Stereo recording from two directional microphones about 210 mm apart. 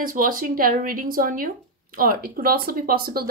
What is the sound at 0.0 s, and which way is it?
A woman's voice, 40° right (ahead or behind).